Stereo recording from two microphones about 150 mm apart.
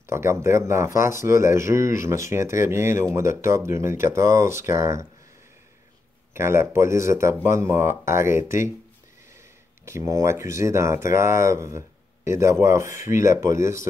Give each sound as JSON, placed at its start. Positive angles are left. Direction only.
{"t": 0.0, "sound": "speech", "side_deg": -20}
{"t": 6.3, "sound": "speech", "side_deg": -15}
{"t": 9.8, "sound": "speech", "side_deg": -20}